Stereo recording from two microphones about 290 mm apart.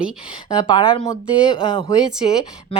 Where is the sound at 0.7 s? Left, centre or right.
Centre.